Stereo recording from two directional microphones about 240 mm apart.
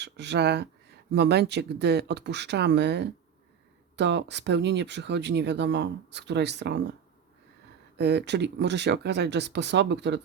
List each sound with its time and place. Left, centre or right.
0.0 s speech: right
7.9 s speech: right